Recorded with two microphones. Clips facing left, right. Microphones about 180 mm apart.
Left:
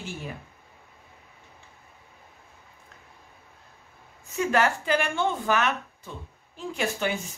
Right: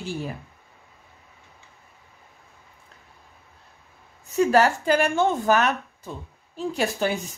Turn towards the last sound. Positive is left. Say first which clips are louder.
# right 4 dB
turn(degrees=-35)  # may be behind; listen again after turning